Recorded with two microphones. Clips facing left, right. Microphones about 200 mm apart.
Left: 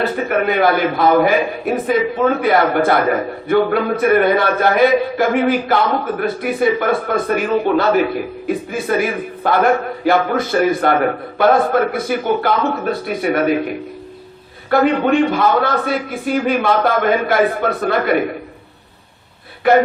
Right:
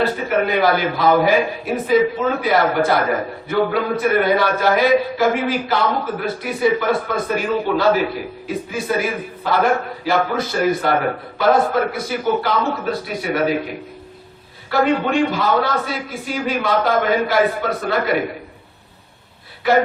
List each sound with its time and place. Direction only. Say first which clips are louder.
0.3 s a man's voice: left 2 dB; 55° left (ahead or behind)
14.7 s a man's voice: left 4 dB; 55° left (ahead or behind)
19.6 s a man's voice: left 4 dB; 55° left (ahead or behind)